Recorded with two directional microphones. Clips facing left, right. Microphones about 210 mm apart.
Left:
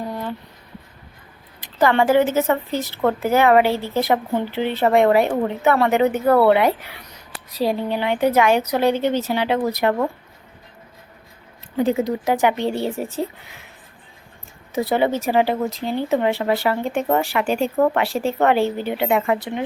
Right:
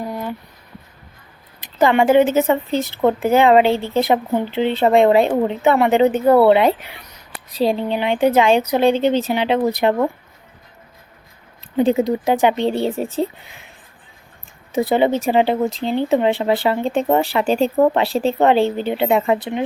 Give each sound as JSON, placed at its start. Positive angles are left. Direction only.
{"t": 0.0, "sound": "a sound", "side_deg": -10}
{"t": 1.8, "sound": "speech", "side_deg": -20}
{"t": 11.8, "sound": "speech", "side_deg": -30}
{"t": 14.7, "sound": "speech", "side_deg": -25}